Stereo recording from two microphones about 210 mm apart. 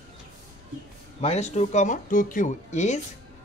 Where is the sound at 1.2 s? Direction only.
30° left (ahead or behind).